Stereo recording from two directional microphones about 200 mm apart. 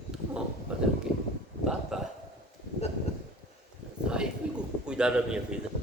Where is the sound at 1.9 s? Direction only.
Centre (ahead or behind).